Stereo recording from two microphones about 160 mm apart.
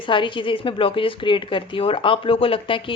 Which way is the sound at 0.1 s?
30° left (ahead or behind).